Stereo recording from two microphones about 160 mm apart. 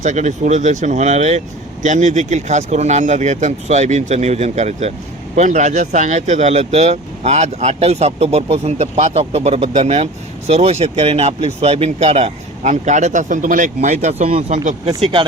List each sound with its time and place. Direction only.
0.0 s speech: 50° right (ahead or behind)